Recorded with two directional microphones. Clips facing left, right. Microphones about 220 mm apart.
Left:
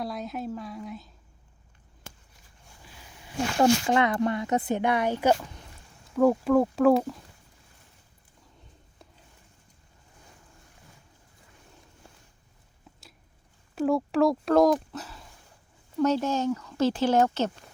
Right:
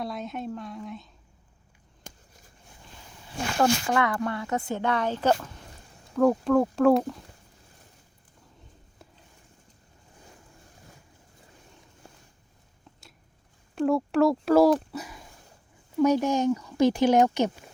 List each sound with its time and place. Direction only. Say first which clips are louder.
0.0 s speech: even; centre (ahead or behind)
3.6 s speech: left 2 dB; 20° left (ahead or behind); by 7.2 s centre (ahead or behind)
13.7 s speech: right 1 dB; centre (ahead or behind)
14.9 s a sound: right 2 dB; 15° right (ahead or behind)
16.0 s speech: right 3 dB; 15° right (ahead or behind)